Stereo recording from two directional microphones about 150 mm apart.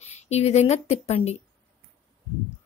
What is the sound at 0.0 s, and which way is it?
Speech, 45° left (ahead or behind).